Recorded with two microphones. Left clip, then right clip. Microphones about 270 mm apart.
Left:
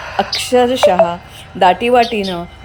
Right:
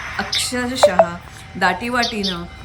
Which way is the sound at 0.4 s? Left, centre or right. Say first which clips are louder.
Left 6 dB; centre.